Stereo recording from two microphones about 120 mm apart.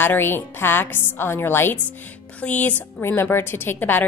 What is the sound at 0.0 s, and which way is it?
Speech, 15° left (ahead or behind).